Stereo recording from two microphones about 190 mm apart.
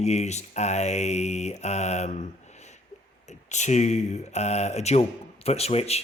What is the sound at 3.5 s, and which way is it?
Speech, 40° left (ahead or behind).